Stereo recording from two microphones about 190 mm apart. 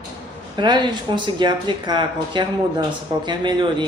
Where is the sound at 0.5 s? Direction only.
25° right (ahead or behind).